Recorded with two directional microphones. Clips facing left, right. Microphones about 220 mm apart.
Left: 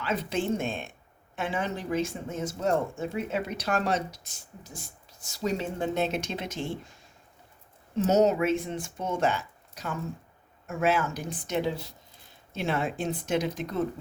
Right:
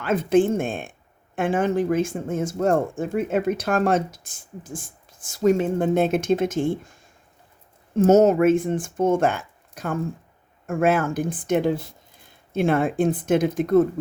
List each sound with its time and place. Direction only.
0.0 s speech: 50° right (ahead or behind)
7.9 s speech: 50° right (ahead or behind)